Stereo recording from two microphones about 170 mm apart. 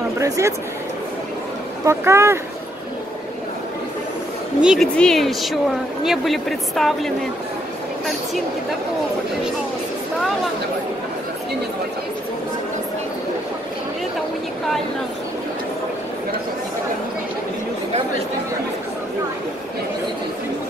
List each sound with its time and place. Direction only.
0.2 s speech: 15° right (ahead or behind)
1.9 s speech: 15° right (ahead or behind)
4.6 s speech: 5° right (ahead or behind)